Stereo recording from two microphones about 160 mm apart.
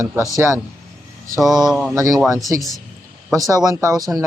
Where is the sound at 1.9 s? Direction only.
20° right (ahead or behind).